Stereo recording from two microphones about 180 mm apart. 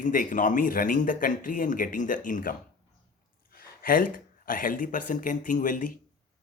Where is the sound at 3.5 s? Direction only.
55° left (ahead or behind).